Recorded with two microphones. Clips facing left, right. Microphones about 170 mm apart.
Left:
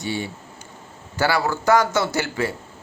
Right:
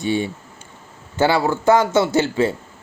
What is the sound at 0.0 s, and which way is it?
A man's voice, 20° right (ahead or behind).